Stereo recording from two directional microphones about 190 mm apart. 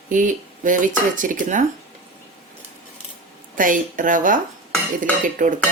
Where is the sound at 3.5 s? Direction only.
45° right (ahead or behind).